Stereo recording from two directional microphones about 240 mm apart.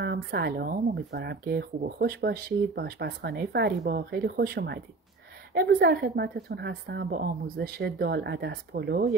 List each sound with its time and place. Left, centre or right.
0.0 s speech: right